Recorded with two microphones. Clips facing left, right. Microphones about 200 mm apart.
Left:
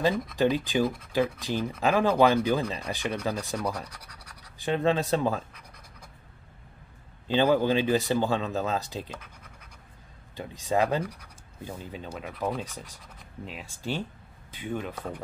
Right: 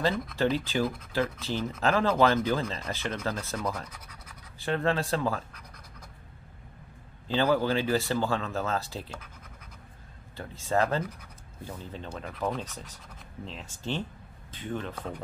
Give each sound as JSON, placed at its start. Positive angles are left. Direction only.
{"t": 0.4, "sound": "speech", "side_deg": 15}
{"t": 3.9, "sound": "scratch", "side_deg": -5}
{"t": 4.6, "sound": "speech", "side_deg": 15}
{"t": 7.2, "sound": "speech", "side_deg": 15}
{"t": 10.3, "sound": "speech", "side_deg": 15}